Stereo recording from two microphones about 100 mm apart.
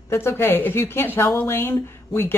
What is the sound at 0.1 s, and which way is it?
A woman's voice, 25° left (ahead or behind).